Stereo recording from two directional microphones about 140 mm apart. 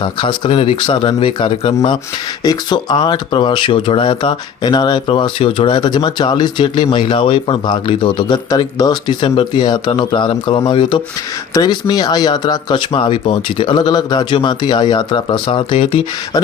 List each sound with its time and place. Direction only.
0.0 s speech: 35° left (ahead or behind)
2.4 s speech: 30° left (ahead or behind)